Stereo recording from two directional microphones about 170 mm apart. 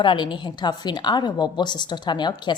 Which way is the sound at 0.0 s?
30° left (ahead or behind).